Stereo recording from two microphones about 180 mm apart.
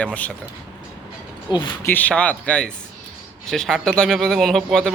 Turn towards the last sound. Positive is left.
turn(degrees=5)  # may be behind; listen again after turning